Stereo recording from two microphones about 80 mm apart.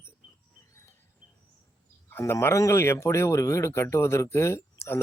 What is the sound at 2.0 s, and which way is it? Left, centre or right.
Speech, left.